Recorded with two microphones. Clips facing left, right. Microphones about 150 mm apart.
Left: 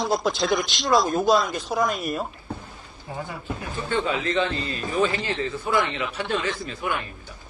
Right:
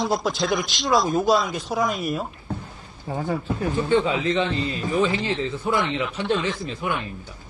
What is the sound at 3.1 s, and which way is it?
Speech, 35° right (ahead or behind).